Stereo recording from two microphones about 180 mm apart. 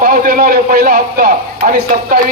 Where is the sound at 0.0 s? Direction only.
50° right (ahead or behind).